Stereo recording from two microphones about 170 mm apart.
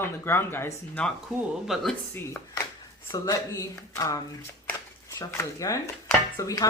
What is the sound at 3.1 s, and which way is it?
Speech, 20° left (ahead or behind).